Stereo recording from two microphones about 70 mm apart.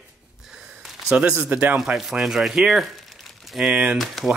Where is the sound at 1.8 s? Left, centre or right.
Centre.